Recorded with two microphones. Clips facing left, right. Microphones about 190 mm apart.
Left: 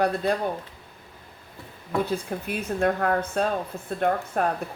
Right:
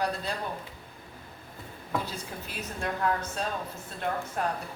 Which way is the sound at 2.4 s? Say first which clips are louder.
Left 11 dB; 60° left (ahead or behind).